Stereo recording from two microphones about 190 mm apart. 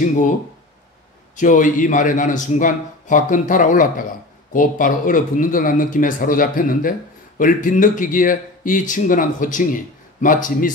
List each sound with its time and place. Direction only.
1.3 s a man's voice: 40° left (ahead or behind)